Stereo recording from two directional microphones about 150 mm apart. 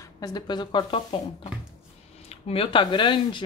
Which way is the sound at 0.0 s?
25° left (ahead or behind).